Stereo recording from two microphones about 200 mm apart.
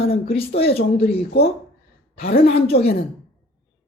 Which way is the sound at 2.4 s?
30° left (ahead or behind).